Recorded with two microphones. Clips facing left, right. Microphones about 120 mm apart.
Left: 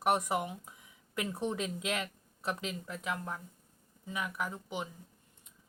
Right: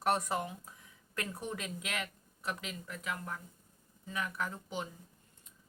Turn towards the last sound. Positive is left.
turn(degrees=15)  # may be behind; listen again after turning